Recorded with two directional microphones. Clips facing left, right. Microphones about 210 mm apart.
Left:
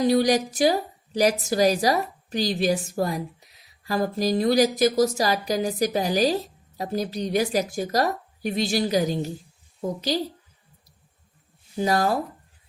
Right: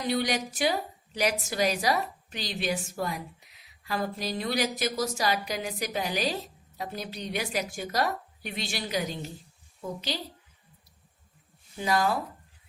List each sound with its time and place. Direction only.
0.0 s a woman's voice: 40° left (ahead or behind)
11.8 s a woman's voice: 40° left (ahead or behind)